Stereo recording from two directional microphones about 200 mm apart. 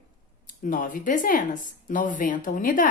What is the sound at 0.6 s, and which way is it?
A woman's voice, 40° left (ahead or behind).